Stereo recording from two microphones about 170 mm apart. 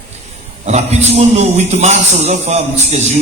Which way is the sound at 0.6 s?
40° right (ahead or behind).